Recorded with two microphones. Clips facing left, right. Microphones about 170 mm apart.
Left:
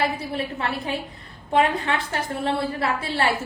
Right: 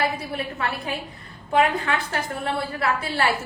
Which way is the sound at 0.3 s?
25° left (ahead or behind).